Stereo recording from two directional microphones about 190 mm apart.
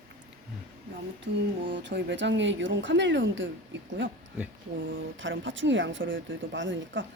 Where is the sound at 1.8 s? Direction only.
70° right (ahead or behind).